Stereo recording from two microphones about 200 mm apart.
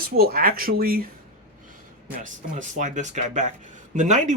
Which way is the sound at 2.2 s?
40° right (ahead or behind).